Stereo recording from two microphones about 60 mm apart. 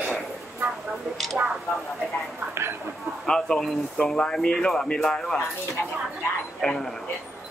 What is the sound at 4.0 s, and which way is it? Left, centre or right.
Speech, centre.